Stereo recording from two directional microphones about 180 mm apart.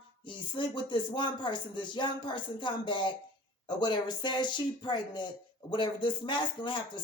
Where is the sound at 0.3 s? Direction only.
25° left (ahead or behind).